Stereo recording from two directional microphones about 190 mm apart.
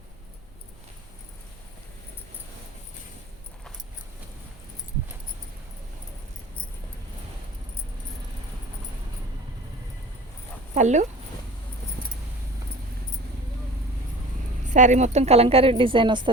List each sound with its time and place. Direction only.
10.8 s speech: 40° right (ahead or behind)
14.7 s a woman's voice: 40° right (ahead or behind); by 16.3 s 25° right (ahead or behind)